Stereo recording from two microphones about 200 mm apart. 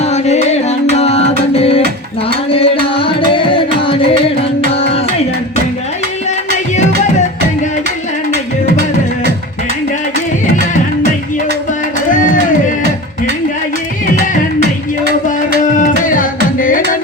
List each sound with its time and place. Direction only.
0.0 s music: 35° left (ahead or behind)
12.1 s music: 40° left (ahead or behind)
14.2 s music: 55° right (ahead or behind)
15.6 s music: 40° left (ahead or behind)